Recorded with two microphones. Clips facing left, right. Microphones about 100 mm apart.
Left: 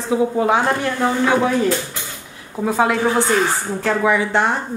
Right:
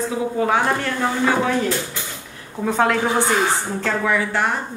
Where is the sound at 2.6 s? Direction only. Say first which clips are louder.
Left 1 dB; 5° left (ahead or behind).